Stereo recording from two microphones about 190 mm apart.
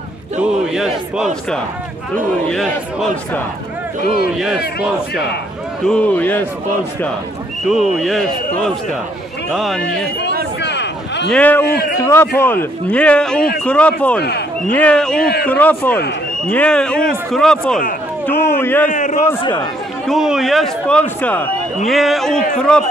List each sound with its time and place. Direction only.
0.4 s a man's voice: 5° right (ahead or behind)
4.0 s a man's voice: 55° left (ahead or behind)
5.9 s a man's voice: 10° left (ahead or behind)
7.6 s a man's voice: centre (ahead or behind)
10.6 s a sound: 65° left (ahead or behind)
11.2 s a man's voice: 5° left (ahead or behind)
18.9 s a man's voice: 40° left (ahead or behind)
20.1 s a man's voice: centre (ahead or behind)